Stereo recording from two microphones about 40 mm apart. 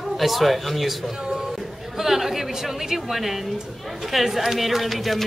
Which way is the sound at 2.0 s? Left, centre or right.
Centre.